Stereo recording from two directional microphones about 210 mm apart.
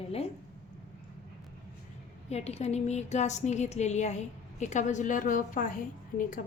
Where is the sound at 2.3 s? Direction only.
30° left (ahead or behind).